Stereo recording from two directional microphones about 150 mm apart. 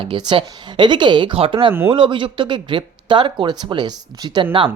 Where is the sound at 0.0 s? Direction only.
35° right (ahead or behind).